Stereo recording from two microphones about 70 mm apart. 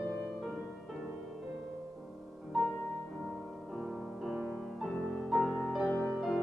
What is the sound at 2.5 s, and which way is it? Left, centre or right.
Music, centre.